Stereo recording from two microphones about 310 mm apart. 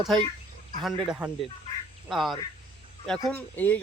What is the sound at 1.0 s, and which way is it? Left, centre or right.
Speech, centre.